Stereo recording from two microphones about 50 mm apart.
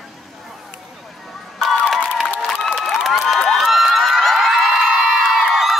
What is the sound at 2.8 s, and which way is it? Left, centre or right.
Crowd, centre.